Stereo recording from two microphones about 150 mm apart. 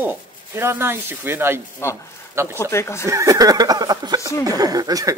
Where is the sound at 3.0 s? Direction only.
20° right (ahead or behind).